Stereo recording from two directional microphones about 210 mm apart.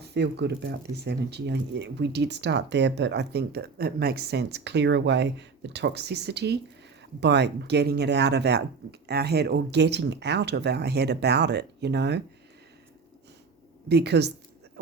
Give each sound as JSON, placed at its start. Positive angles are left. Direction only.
{"t": 0.0, "sound": "speech", "side_deg": -50}
{"t": 13.8, "sound": "speech", "side_deg": -50}